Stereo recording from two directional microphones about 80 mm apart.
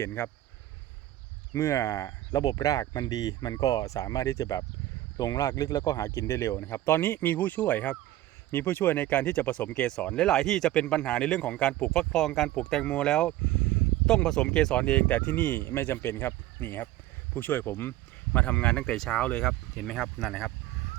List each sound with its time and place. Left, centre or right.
0.0 s speech: left
1.5 s speech: left
2.4 s speech: left
6.1 s speech: left; by 20.5 s centre